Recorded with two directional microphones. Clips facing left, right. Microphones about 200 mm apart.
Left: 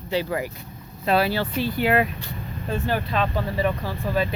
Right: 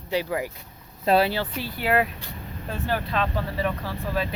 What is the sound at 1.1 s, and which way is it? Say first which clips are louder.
Speech: right 1 dB; 30° right (ahead or behind).